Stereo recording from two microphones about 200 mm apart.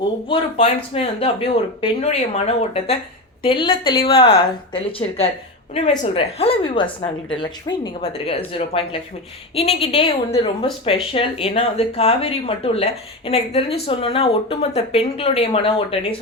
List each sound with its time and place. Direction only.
0.3 s a woman's voice: 30° left (ahead or behind)